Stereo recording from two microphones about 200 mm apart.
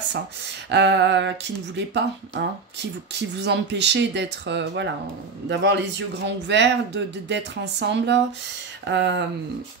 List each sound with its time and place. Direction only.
0.7 s speech: 60° right (ahead or behind)